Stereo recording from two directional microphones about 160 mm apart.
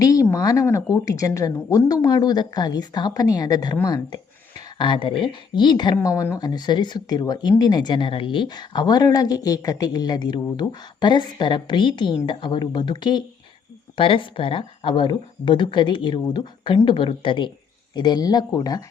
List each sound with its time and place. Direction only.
0.0 s speech: 20° left (ahead or behind)